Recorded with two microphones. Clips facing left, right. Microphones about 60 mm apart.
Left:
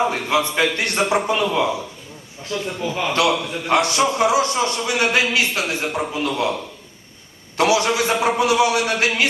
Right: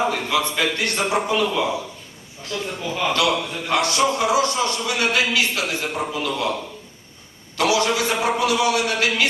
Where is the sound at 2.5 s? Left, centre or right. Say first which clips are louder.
Left 2 dB; centre.